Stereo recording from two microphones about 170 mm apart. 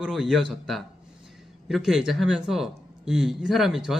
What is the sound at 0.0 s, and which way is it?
A man's voice, 5° right (ahead or behind).